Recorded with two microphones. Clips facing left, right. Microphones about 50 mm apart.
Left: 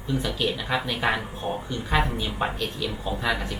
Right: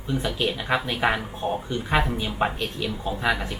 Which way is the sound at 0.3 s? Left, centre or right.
Right.